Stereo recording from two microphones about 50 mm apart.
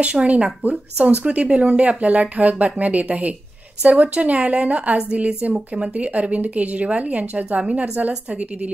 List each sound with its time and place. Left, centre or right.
0.0 s speech: right